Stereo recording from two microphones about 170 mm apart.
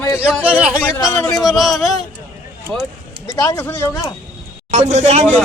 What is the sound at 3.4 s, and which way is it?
Speech, 15° left (ahead or behind).